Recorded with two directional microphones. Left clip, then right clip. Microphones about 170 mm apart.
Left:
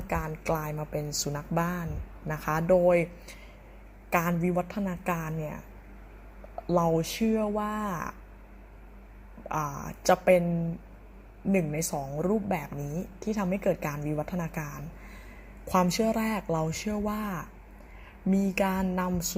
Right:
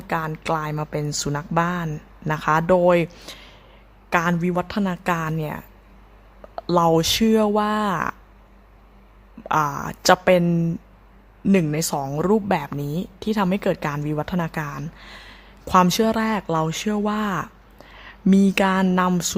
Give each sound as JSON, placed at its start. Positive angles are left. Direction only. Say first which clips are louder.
{"t": 0.4, "sound": "a woman's voice", "louder": "right 7 dB", "side_deg": -20}
{"t": 6.6, "sound": "a woman's voice", "louder": "right 8 dB", "side_deg": -25}
{"t": 9.5, "sound": "a woman's voice", "louder": "right 11 dB", "side_deg": -30}
{"t": 11.5, "sound": "a woman's voice", "louder": "right 7 dB", "side_deg": -25}
{"t": 11.9, "sound": "a woman's voice", "louder": "right 9 dB", "side_deg": -40}